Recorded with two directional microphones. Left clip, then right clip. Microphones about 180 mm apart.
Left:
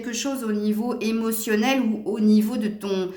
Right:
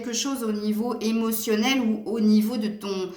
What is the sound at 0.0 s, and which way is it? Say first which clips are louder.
Speech: even; 45° left (ahead or behind).